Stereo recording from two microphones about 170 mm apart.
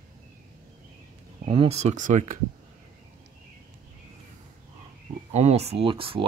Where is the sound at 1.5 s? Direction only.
35° right (ahead or behind).